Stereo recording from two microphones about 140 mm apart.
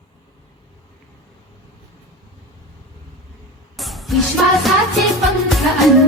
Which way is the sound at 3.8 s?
Centre (ahead or behind).